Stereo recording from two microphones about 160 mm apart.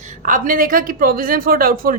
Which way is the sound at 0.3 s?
60° right (ahead or behind).